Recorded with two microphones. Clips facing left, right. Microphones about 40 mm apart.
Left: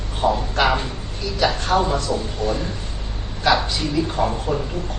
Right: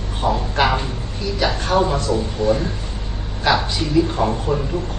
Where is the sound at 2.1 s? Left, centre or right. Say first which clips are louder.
Right 3 dB; centre.